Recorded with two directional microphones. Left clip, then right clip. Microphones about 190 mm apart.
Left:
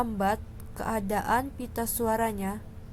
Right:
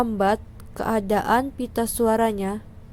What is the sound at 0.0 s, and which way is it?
A woman's voice, 20° right (ahead or behind).